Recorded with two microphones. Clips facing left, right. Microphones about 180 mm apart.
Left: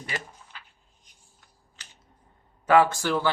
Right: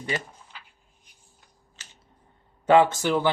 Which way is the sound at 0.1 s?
25° right (ahead or behind).